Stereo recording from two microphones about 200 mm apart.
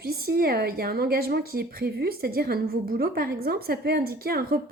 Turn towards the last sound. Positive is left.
turn(degrees=-50)  # may be behind; listen again after turning